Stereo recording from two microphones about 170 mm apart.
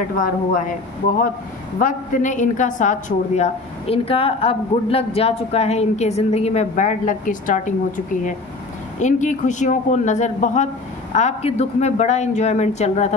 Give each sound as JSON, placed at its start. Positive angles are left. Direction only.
{"t": 0.2, "sound": "a man's voice", "side_deg": 50}